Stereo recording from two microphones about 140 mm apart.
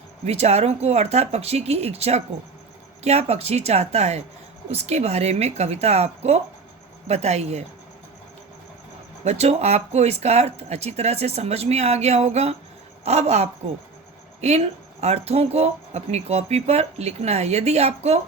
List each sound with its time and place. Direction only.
0.3 s speech: 50° right (ahead or behind)
9.2 s speech: 50° right (ahead or behind)